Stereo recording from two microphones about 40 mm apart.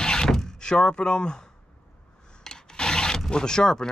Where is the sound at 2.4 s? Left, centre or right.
Centre.